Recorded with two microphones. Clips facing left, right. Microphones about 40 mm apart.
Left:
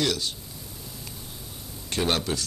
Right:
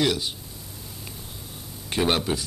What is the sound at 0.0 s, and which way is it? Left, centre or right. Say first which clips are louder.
Speech: right 3 dB; centre.